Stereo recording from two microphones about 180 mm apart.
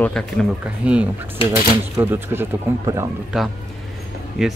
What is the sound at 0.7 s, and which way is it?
Speech, 5° right (ahead or behind).